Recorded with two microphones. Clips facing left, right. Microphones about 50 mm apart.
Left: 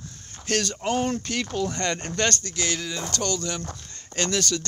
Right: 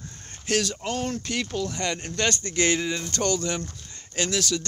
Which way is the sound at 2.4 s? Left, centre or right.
Right.